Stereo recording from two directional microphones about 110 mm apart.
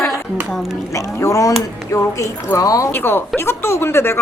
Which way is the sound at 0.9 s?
30° left (ahead or behind).